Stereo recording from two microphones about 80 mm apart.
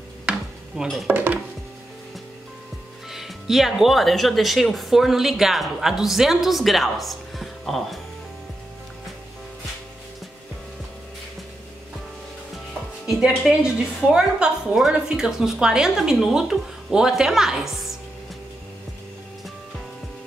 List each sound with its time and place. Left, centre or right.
1.0 s dishes: right
3.1 s speech: centre
13.0 s music: centre
13.5 s a woman's voice: centre